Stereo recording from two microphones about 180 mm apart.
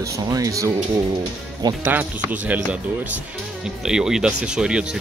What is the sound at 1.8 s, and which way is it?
Speech, 10° right (ahead or behind).